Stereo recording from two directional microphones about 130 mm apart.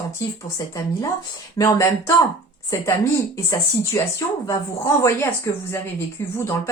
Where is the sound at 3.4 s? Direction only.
25° left (ahead or behind).